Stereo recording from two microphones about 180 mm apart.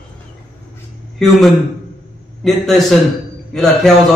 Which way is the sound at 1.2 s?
Centre (ahead or behind).